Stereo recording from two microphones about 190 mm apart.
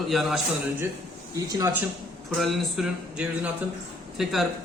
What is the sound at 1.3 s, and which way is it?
Speech, 20° right (ahead or behind).